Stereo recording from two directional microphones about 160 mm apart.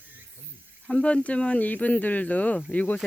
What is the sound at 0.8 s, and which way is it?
Speech, 5° left (ahead or behind).